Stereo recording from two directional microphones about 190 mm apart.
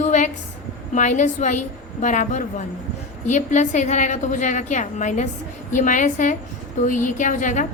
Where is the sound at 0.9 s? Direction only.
40° left (ahead or behind).